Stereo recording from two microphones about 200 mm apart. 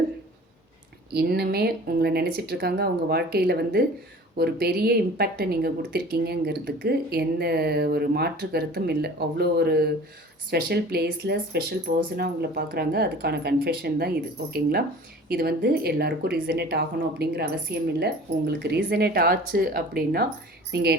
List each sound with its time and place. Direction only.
1.1 s speech: 55° right (ahead or behind)